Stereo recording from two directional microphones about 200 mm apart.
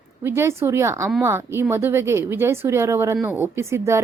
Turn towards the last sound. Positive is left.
turn(degrees=-15)  # may be behind; listen again after turning